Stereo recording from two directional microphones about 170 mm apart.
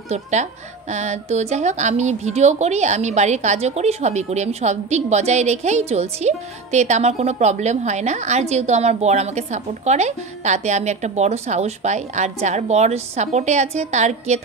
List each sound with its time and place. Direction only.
0.1 s speech: 45° right (ahead or behind)